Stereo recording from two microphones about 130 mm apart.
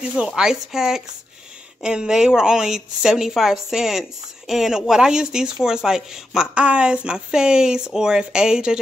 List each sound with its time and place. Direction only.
0.1 s speech: 5° right (ahead or behind)